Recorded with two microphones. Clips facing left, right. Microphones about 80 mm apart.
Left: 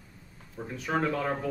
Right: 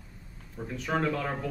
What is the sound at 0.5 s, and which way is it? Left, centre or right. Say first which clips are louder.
Speech: even; centre.